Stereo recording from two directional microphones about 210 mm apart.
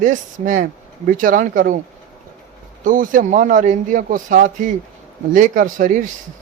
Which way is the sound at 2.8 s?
40° right (ahead or behind).